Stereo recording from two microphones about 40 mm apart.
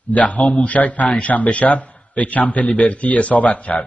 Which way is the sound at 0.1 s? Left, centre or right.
Left.